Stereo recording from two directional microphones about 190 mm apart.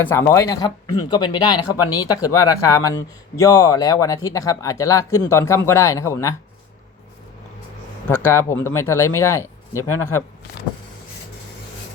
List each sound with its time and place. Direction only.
0.0 s speech: 10° left (ahead or behind)
8.2 s speech: 15° left (ahead or behind)